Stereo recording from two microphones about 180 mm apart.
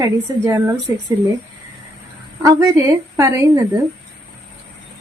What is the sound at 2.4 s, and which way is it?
A woman's voice, 20° right (ahead or behind).